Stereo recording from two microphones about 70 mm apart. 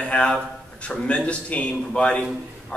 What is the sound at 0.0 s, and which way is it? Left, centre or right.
A man's voice, centre.